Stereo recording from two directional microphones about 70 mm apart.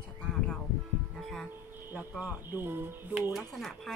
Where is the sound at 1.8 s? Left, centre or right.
Right.